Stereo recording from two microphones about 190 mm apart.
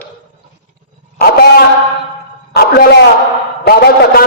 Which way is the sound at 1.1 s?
55° left (ahead or behind).